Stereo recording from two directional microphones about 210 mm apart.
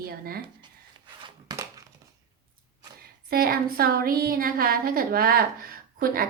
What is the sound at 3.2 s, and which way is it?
A woman's voice, 45° right (ahead or behind).